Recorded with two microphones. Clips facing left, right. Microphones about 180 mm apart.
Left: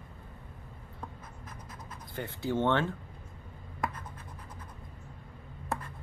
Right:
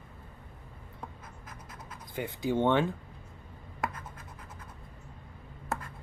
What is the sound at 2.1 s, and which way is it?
Speech, 15° right (ahead or behind).